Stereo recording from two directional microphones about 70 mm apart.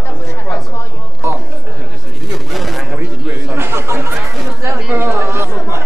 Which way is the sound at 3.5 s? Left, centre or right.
Right.